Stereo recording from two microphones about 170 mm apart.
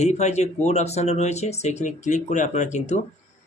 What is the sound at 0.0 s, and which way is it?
Speech, 40° left (ahead or behind).